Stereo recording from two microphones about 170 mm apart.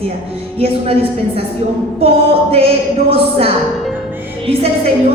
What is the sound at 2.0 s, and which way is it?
A woman's voice, 35° right (ahead or behind).